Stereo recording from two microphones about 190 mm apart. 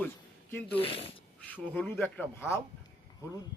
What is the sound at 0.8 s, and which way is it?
Speech, 30° left (ahead or behind).